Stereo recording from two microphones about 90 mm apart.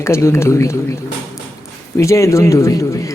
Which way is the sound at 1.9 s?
35° left (ahead or behind).